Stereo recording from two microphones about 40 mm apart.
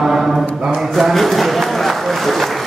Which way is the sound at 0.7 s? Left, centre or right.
Centre.